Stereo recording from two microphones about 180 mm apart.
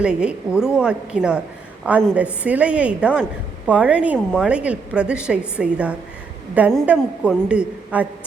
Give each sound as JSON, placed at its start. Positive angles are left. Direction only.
{"t": 0.0, "sound": "a woman's voice", "side_deg": -5}